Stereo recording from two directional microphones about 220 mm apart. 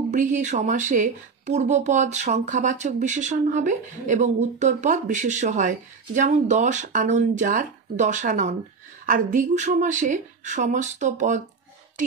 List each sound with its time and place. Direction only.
0.1 s speech: 35° right (ahead or behind)